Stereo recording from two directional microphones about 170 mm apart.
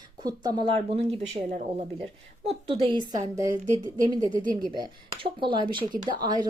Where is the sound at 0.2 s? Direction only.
25° right (ahead or behind).